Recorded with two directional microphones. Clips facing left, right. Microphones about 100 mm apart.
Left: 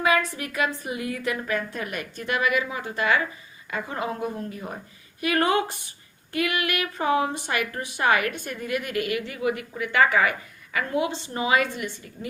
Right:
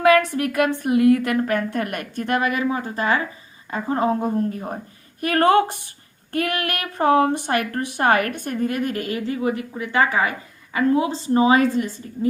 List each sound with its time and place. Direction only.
0.0 s a woman's voice: 60° right (ahead or behind); by 11.9 s 35° right (ahead or behind)